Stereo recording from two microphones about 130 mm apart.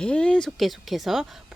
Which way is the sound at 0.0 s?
10° left (ahead or behind).